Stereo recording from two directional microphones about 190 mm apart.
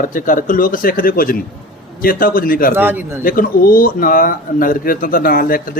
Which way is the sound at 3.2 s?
50° left (ahead or behind).